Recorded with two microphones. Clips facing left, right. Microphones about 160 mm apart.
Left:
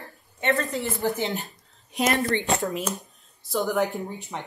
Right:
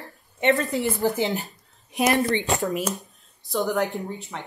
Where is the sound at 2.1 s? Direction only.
20° right (ahead or behind).